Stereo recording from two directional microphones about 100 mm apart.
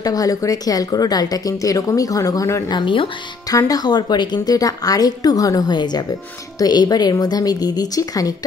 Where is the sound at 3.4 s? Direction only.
35° left (ahead or behind).